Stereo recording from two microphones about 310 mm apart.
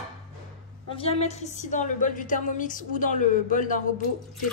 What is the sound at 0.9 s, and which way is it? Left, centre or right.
A woman's voice, centre.